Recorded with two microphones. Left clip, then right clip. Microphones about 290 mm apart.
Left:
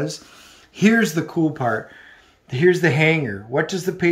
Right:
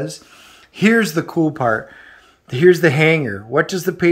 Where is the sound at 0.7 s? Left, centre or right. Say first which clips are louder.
Right 3 dB; centre.